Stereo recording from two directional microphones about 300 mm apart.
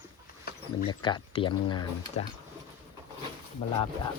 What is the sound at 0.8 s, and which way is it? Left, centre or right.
Speech, centre.